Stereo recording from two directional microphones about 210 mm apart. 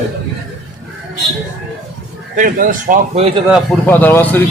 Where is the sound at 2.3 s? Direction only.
40° right (ahead or behind).